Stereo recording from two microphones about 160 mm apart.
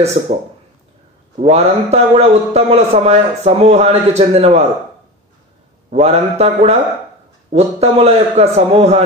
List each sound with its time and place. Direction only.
0.0 s a man's voice: 40° right (ahead or behind)
5.9 s a man's voice: 45° right (ahead or behind)